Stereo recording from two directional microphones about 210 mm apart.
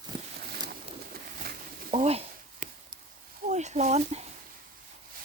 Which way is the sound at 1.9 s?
30° right (ahead or behind).